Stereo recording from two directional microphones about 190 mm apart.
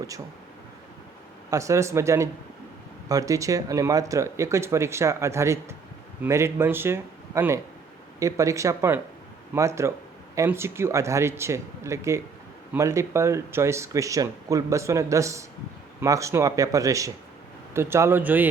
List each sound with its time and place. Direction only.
1.5 s speech: 15° right (ahead or behind)